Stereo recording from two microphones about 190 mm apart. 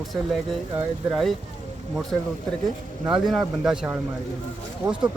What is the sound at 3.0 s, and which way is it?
Speech, centre (ahead or behind).